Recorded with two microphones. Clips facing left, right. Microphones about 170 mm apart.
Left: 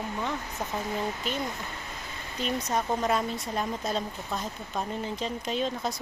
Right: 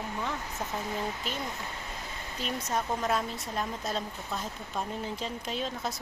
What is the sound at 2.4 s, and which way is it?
Speech, 5° right (ahead or behind).